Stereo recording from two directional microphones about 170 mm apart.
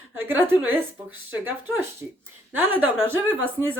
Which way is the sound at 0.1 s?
10° right (ahead or behind).